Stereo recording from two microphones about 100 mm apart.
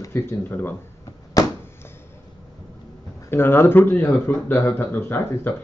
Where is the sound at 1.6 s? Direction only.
25° left (ahead or behind).